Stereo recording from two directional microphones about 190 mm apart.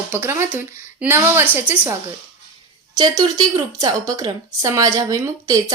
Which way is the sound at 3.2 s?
20° right (ahead or behind).